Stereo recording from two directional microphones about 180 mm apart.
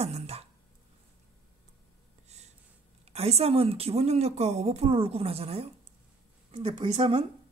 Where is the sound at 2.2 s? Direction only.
35° right (ahead or behind).